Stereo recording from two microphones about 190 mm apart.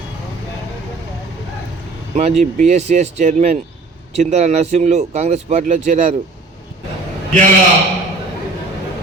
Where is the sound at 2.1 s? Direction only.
35° right (ahead or behind).